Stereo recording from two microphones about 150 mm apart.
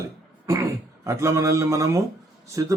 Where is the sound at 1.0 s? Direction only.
20° right (ahead or behind).